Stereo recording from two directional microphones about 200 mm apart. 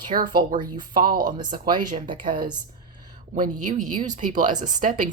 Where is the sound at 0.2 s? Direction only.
25° right (ahead or behind).